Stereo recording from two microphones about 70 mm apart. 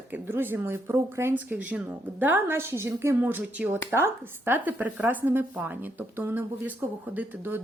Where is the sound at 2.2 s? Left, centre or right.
Right.